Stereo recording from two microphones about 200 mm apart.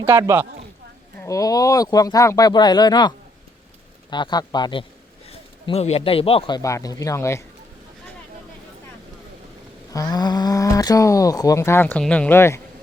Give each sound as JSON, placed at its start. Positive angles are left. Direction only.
{"t": 0.0, "sound": "speech", "side_deg": -10}
{"t": 1.2, "sound": "speech", "side_deg": 15}
{"t": 4.1, "sound": "a man's voice", "side_deg": 20}
{"t": 6.6, "sound": "speech", "side_deg": 15}
{"t": 9.9, "sound": "speech", "side_deg": 20}